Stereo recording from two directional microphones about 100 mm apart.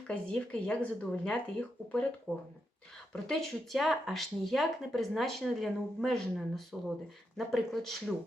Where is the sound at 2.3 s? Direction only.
Centre (ahead or behind).